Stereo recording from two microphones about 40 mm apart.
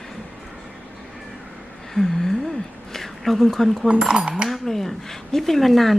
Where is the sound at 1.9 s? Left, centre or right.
Centre.